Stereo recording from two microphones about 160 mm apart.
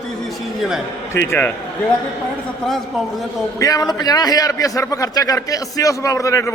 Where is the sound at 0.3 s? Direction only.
Centre (ahead or behind).